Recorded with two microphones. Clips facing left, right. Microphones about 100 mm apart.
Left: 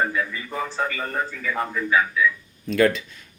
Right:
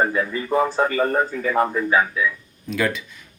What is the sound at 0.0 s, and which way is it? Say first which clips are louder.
Speech: right 4 dB; 35° right (ahead or behind).